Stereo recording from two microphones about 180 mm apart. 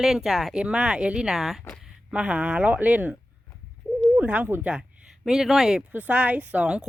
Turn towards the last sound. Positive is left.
turn(degrees=-5)  # may be behind; listen again after turning